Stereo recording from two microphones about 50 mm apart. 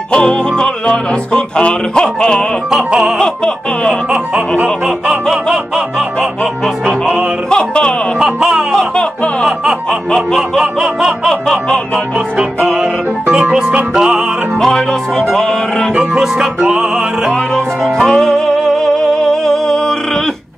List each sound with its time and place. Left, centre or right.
0.1 s music: centre
4.8 s music: centre
7.4 s music: centre
8.2 s music: centre
8.7 s music: centre
10.6 s music: centre
11.2 s music: centre
13.3 s music: centre
14.6 s music: centre
16.2 s music: centre
17.9 s music: centre